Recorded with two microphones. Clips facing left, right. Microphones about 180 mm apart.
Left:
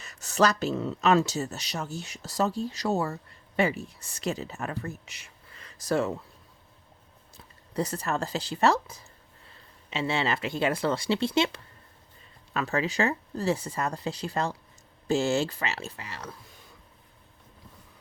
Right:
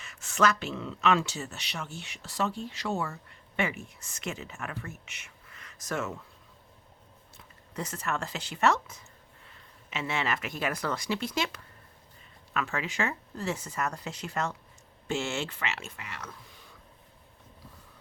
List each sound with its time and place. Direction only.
0.0 s speech: 40° left (ahead or behind)
7.3 s speech: 35° left (ahead or behind)